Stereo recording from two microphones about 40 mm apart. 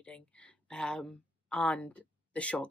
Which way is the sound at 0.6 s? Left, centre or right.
Left.